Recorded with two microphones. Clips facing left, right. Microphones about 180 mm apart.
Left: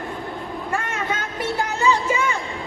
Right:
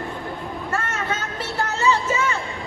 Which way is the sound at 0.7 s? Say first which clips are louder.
Left 1 dB; 15° left (ahead or behind).